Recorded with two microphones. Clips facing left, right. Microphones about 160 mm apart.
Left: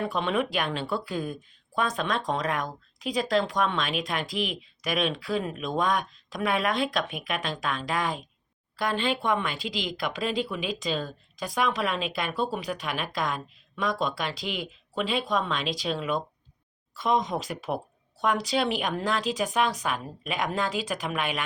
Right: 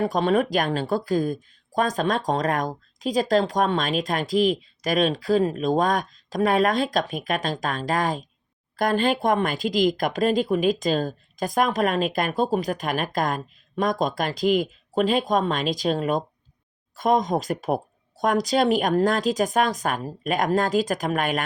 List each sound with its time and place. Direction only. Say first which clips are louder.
0.0 s speech: right 6 dB; 40° right (ahead or behind)